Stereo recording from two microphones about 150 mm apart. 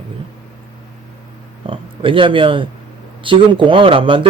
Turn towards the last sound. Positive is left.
turn(degrees=-35)  # may be behind; listen again after turning